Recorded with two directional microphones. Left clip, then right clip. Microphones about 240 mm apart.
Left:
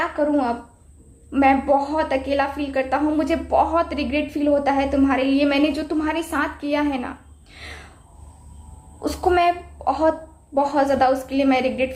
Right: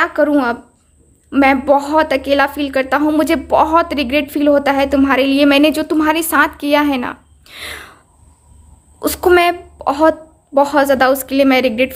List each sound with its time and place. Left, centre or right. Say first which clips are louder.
0.0 s a woman's voice: right 7 dB; right
9.0 s a woman's voice: right 7 dB; right